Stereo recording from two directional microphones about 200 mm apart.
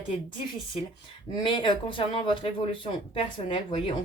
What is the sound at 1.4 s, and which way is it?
Speech, 25° left (ahead or behind).